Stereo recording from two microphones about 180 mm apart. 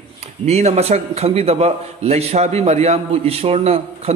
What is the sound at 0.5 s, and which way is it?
A man's voice, 35° right (ahead or behind).